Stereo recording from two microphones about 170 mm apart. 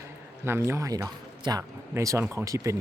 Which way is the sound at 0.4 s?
15° right (ahead or behind).